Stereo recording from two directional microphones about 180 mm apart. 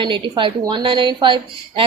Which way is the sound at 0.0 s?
25° right (ahead or behind).